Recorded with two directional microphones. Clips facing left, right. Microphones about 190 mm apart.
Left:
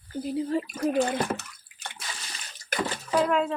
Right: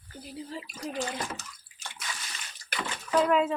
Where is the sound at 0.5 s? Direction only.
55° left (ahead or behind).